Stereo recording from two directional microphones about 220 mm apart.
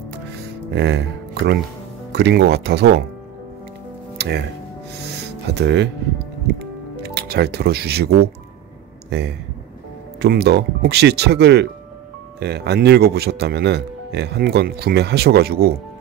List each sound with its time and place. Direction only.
0.7 s speech: 50° right (ahead or behind)
2.1 s speech: 50° right (ahead or behind)
4.2 s speech: 50° right (ahead or behind)
5.5 s speech: 50° right (ahead or behind)
6.4 s music: 45° right (ahead or behind)
9.1 s speech: 50° right (ahead or behind)